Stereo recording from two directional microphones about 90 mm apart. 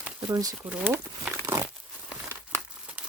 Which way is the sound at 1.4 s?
35° right (ahead or behind).